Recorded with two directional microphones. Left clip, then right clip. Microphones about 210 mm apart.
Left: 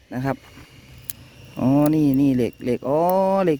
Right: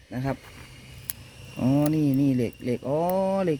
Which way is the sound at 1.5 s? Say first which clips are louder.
Left 6 dB; 40° left (ahead or behind).